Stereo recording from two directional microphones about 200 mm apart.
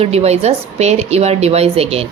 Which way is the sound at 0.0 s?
30° right (ahead or behind).